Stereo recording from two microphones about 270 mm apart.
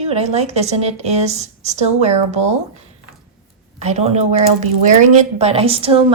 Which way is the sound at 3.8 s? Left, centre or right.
Right.